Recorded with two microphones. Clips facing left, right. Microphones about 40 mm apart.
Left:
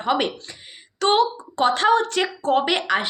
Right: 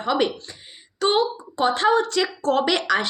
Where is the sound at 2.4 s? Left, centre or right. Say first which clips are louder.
Left 1 dB; left.